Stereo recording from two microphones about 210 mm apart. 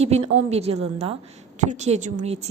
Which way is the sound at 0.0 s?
30° right (ahead or behind).